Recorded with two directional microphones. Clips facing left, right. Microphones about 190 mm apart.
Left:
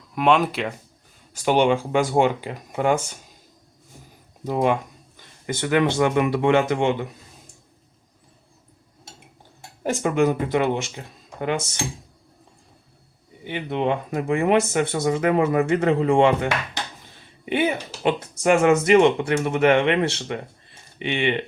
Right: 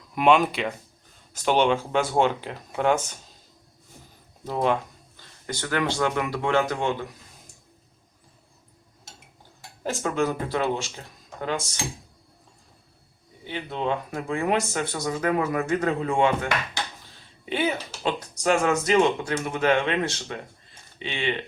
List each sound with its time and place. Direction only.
0.1 s speech: centre (ahead or behind)
4.4 s speech: 10° left (ahead or behind)
9.8 s speech: 15° left (ahead or behind)
13.4 s speech: 15° left (ahead or behind)
17.4 s speech: 15° left (ahead or behind)
21.1 s speech: 20° left (ahead or behind)